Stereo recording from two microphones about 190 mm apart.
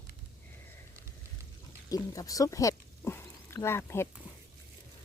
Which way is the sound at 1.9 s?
20° left (ahead or behind).